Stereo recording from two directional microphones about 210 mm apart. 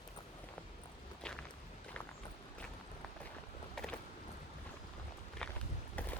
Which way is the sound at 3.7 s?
5° left (ahead or behind).